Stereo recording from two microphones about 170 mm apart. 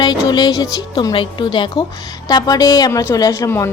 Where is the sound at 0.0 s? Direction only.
25° left (ahead or behind).